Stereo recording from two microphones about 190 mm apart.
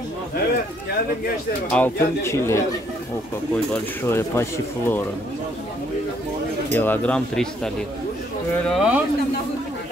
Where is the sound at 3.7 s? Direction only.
10° left (ahead or behind).